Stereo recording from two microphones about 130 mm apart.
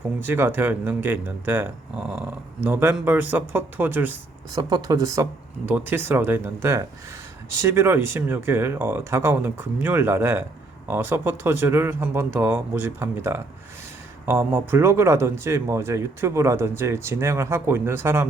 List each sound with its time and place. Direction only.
0.2 s speech: 15° right (ahead or behind)
4.5 s speech: 30° right (ahead or behind)
5.6 s speech: 15° right (ahead or behind)